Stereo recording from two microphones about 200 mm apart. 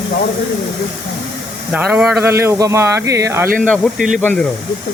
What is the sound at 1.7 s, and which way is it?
Speech, 5° right (ahead or behind).